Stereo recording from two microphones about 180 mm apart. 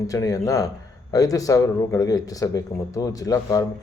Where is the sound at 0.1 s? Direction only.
20° left (ahead or behind).